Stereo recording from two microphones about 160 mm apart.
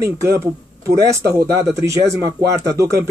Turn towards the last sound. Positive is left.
turn(degrees=-20)  # may be behind; listen again after turning